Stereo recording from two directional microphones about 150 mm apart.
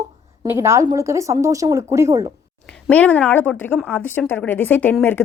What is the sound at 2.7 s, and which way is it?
Speech, 5° left (ahead or behind).